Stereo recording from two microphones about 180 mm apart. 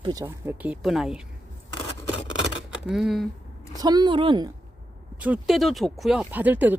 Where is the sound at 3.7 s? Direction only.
20° right (ahead or behind).